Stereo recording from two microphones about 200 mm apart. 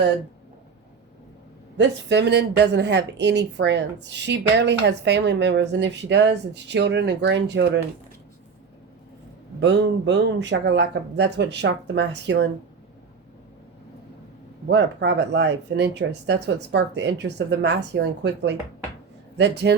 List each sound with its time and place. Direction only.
1.8 s speech: 60° right (ahead or behind)
9.6 s speech: 60° right (ahead or behind)
14.7 s speech: 60° right (ahead or behind)